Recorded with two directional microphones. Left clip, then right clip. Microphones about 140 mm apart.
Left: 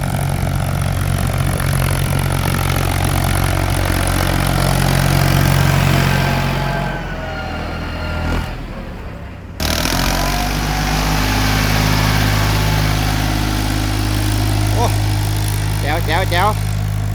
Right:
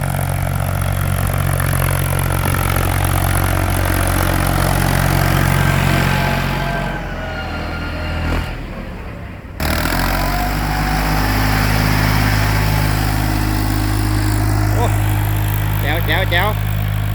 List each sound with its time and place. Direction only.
1.8 s vehicle: centre (ahead or behind); by 5.4 s 40° left (ahead or behind)
9.6 s a sound: 10° left (ahead or behind)
13.1 s vehicle: centre (ahead or behind)
15.9 s vehicle: 20° left (ahead or behind)